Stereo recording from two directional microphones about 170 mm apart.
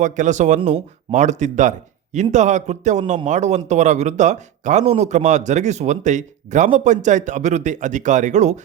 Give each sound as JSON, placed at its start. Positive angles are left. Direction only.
{"t": 0.0, "sound": "speech", "side_deg": -45}